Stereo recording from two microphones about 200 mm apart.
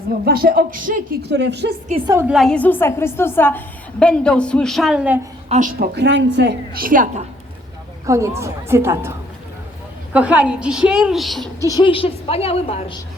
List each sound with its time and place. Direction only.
0.3 s speech: 50° right (ahead or behind)
1.3 s a woman's voice: 60° right (ahead or behind)
2.0 s a woman's voice: 10° right (ahead or behind)
2.3 s a woman's voice: centre (ahead or behind)
5.5 s speech: 40° right (ahead or behind)
5.9 s a woman's voice: 60° right (ahead or behind); by 7.3 s 40° right (ahead or behind)
8.0 s a woman's voice: 15° right (ahead or behind)
11.7 s a woman's voice: 25° left (ahead or behind)